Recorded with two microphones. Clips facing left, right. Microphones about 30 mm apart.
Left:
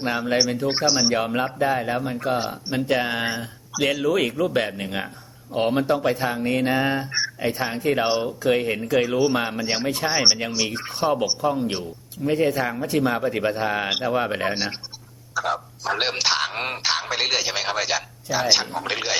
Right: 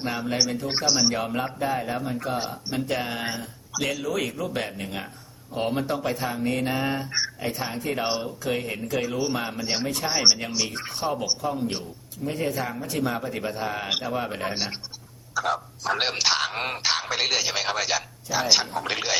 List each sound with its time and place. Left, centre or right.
0.0 s speech: left
1.1 s speech: left
3.2 s speech: centre
4.0 s speech: left
8.0 s speech: centre
8.4 s speech: left
10.1 s a man's voice: centre
15.4 s speech: centre